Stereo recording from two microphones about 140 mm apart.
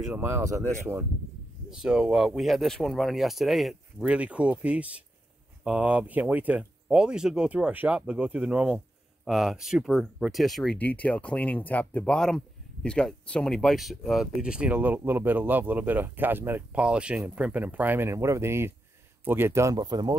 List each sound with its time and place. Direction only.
0.1 s speech: 15° right (ahead or behind)
1.7 s speech: 5° right (ahead or behind); by 20.2 s 30° right (ahead or behind)